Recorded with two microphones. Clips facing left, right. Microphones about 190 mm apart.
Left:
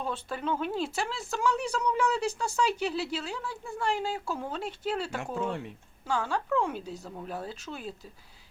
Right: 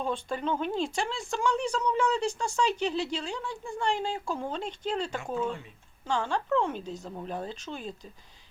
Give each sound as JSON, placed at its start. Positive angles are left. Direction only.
{"t": 0.0, "sound": "speech", "side_deg": 5}
{"t": 5.3, "sound": "speech", "side_deg": 65}
{"t": 6.1, "sound": "speech", "side_deg": 5}